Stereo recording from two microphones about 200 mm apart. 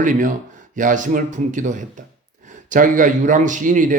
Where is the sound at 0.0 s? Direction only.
40° right (ahead or behind).